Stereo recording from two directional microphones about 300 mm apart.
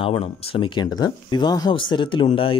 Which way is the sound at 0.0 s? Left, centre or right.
Centre.